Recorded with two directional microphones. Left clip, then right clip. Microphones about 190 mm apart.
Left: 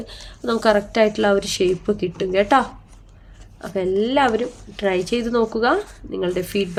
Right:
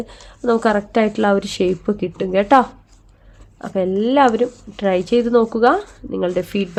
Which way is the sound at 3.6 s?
50° right (ahead or behind).